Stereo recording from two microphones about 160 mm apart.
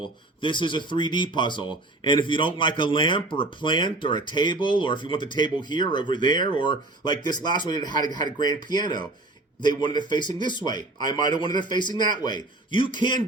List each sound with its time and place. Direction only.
0.4 s speech: 30° left (ahead or behind)